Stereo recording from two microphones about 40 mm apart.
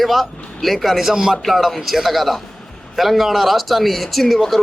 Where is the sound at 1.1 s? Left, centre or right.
Centre.